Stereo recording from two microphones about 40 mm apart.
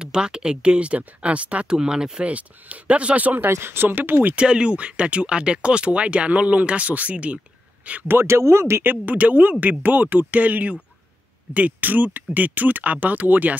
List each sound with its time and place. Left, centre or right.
0.0 s speech: right
1.7 s speech: centre
2.2 s speech: right
3.4 s speech: right
4.4 s speech: right
8.1 s speech: right
8.8 s speech: right